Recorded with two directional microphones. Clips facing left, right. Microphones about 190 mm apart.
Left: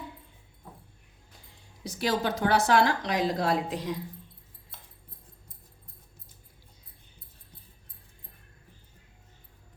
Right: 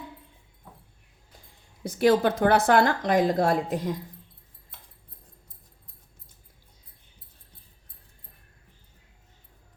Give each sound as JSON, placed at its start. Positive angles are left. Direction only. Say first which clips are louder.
{"t": 1.8, "sound": "speech", "louder": "right 8 dB", "side_deg": -55}